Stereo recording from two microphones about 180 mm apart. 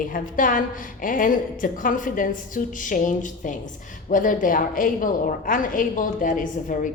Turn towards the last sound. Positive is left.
turn(degrees=50)  # may be behind; listen again after turning